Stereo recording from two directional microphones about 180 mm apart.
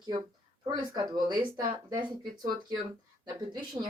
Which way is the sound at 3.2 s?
25° right (ahead or behind).